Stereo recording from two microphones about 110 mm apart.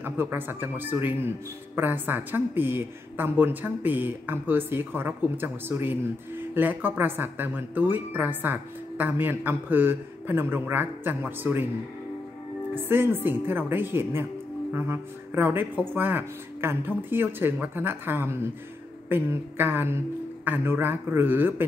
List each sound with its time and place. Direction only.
0.0 s a woman's voice: 20° right (ahead or behind)
12.8 s speech: 20° right (ahead or behind)